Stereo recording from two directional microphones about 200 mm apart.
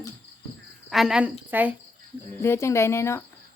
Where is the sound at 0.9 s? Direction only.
Centre (ahead or behind).